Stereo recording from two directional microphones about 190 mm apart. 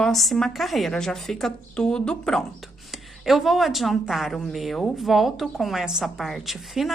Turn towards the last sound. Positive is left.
turn(degrees=0)  # may be behind; listen again after turning